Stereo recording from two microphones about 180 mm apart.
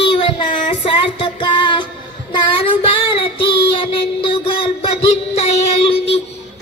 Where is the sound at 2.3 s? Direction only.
30° left (ahead or behind).